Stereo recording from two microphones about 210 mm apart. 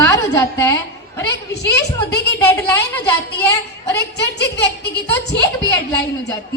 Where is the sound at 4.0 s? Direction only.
55° left (ahead or behind).